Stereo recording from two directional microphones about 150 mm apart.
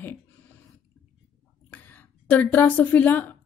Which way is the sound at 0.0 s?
10° left (ahead or behind).